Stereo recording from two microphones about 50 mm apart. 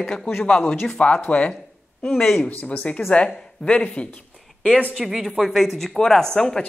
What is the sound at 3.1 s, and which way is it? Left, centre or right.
Speech, left.